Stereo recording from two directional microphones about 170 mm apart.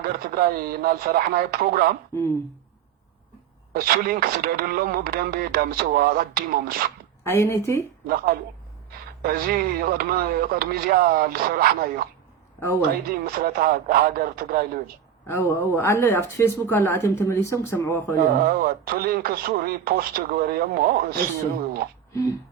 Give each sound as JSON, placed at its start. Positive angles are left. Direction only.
{"t": 0.0, "sound": "speech", "side_deg": -60}
{"t": 3.7, "sound": "speech", "side_deg": -60}
{"t": 7.3, "sound": "speech", "side_deg": 15}
{"t": 8.0, "sound": "speech", "side_deg": -60}
{"t": 13.1, "sound": "speech", "side_deg": -60}
{"t": 15.3, "sound": "speech", "side_deg": 10}
{"t": 18.3, "sound": "speech", "side_deg": -60}
{"t": 22.1, "sound": "a sound", "side_deg": 20}